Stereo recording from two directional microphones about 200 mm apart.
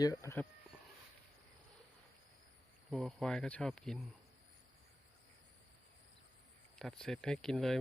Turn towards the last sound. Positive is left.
turn(degrees=0)  # may be behind; listen again after turning